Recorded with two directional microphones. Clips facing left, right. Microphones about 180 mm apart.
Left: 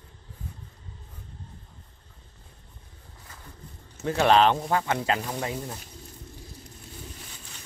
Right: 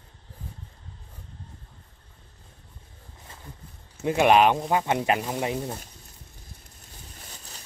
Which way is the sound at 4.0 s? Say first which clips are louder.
Right 1 dB; 15° right (ahead or behind).